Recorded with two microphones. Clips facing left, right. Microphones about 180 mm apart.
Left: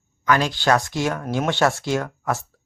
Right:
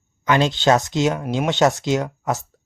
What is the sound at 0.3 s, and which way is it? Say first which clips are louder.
A man's voice: right 2 dB; 25° right (ahead or behind).